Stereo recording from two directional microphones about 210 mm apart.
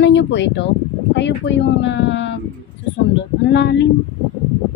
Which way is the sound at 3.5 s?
55° left (ahead or behind).